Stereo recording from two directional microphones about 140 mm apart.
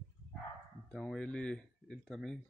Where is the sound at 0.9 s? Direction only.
5° left (ahead or behind).